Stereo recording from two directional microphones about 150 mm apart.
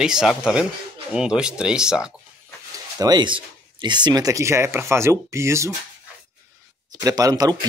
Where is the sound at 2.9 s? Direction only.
30° right (ahead or behind).